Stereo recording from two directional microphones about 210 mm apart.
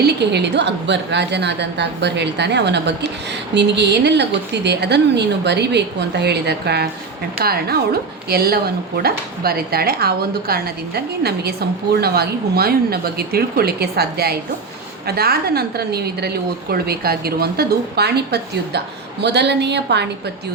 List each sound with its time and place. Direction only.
0.0 s a woman's voice: 55° right (ahead or behind)